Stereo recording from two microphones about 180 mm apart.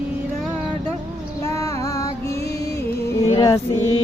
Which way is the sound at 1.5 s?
20° left (ahead or behind).